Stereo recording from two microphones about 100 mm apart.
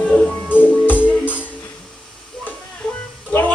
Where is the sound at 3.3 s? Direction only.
20° left (ahead or behind).